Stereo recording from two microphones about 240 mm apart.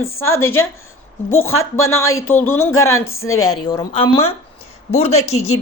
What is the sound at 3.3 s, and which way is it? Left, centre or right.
Speech, left.